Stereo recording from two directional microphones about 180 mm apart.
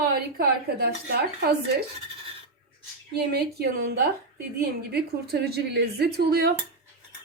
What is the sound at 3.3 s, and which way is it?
A woman's voice, 60° right (ahead or behind).